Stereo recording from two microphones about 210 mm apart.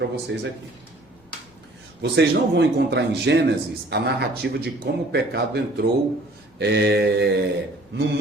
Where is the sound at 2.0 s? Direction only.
55° right (ahead or behind).